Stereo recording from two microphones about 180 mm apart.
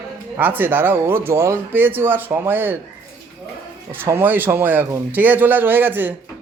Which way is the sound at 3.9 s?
10° right (ahead or behind).